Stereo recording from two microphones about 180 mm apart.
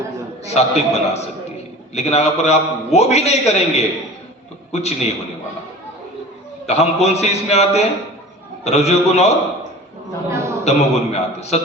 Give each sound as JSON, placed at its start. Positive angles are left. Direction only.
{"t": 0.4, "sound": "a man's voice", "side_deg": 35}
{"t": 6.7, "sound": "a man's voice", "side_deg": 35}
{"t": 10.2, "sound": "a sound", "side_deg": -15}
{"t": 10.6, "sound": "a man's voice", "side_deg": 35}